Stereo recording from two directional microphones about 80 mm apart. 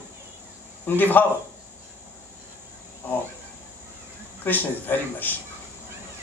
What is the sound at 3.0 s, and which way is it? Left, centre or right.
Speech, left.